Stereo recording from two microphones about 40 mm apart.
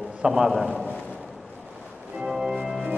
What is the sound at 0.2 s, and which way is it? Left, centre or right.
Speech, right.